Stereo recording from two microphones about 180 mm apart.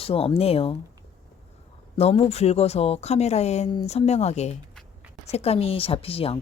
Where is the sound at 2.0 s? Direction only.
35° left (ahead or behind).